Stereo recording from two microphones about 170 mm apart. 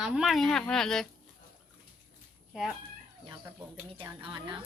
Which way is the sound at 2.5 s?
Centre (ahead or behind).